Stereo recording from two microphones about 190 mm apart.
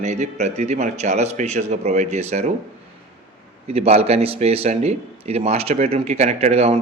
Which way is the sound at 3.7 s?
30° right (ahead or behind).